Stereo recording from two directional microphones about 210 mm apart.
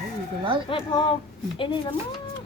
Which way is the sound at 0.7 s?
25° left (ahead or behind).